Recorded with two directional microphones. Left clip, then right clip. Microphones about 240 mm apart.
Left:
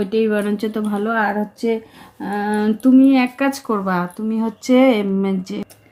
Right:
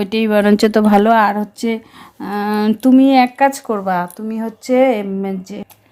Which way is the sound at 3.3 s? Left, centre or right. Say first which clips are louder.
Right 5 dB; centre.